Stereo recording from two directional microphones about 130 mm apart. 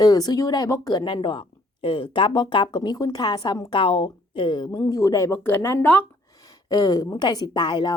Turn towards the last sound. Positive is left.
turn(degrees=35)  # may be behind; listen again after turning